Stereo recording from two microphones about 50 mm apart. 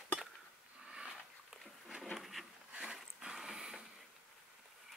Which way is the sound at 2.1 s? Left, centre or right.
Centre.